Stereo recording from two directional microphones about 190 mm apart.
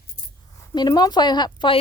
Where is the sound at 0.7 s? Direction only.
20° left (ahead or behind).